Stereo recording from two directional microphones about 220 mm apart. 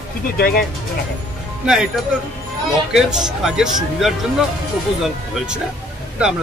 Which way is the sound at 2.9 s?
Centre (ahead or behind).